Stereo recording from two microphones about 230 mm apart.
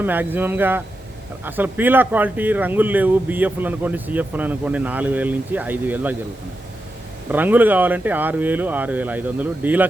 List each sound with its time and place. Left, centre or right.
0.0 s speech: centre
7.3 s speech: centre